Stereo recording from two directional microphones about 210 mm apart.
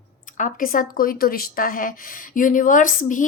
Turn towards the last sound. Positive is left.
turn(degrees=40)  # may be behind; listen again after turning